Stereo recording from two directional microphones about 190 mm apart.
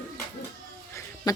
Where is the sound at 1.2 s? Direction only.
20° left (ahead or behind).